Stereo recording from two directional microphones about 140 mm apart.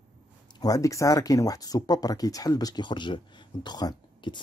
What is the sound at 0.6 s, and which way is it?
Speech, 25° left (ahead or behind).